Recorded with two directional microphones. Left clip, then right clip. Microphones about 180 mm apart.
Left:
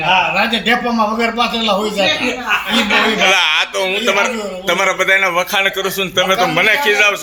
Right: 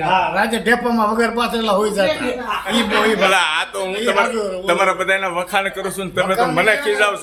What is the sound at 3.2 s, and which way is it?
A man's voice, centre (ahead or behind).